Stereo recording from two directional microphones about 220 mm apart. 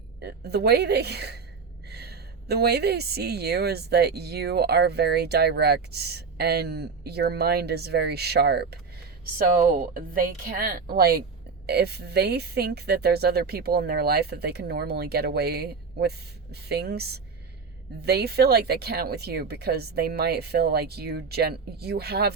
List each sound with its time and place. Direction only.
0.2 s a woman's voice: 50° right (ahead or behind)